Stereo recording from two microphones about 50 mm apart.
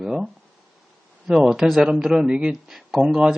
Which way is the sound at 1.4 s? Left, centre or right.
Centre.